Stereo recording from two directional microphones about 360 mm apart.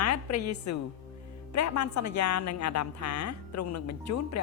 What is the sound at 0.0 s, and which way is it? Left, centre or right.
A woman's voice, left.